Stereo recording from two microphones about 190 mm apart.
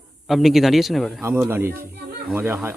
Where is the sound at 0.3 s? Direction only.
Centre (ahead or behind).